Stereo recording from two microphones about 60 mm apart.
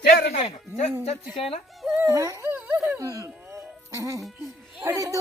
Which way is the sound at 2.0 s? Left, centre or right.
Right.